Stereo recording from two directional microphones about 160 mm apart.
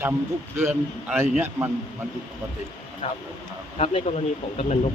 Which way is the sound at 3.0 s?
40° left (ahead or behind).